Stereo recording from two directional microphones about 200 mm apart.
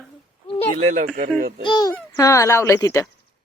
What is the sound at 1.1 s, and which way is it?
Speech, 45° right (ahead or behind).